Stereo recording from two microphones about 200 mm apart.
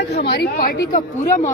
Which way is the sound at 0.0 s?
55° left (ahead or behind).